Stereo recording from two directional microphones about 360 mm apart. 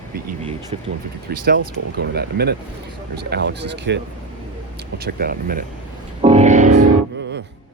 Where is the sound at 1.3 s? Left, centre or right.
Right.